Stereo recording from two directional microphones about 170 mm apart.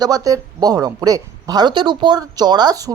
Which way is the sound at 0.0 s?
20° right (ahead or behind).